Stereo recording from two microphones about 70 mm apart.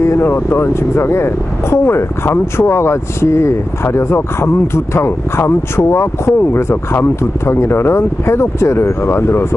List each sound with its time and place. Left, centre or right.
0.0 s speech: left